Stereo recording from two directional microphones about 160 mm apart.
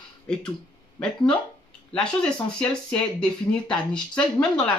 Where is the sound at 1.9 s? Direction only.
5° left (ahead or behind).